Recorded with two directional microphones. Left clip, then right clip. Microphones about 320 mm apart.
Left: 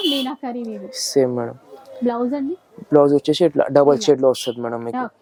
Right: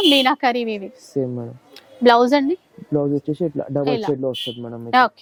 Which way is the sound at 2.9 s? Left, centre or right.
Centre.